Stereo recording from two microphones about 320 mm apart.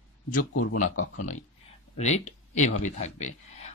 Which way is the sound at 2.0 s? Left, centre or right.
Left.